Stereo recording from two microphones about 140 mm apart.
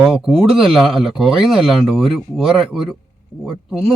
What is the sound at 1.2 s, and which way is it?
Speech, 40° right (ahead or behind).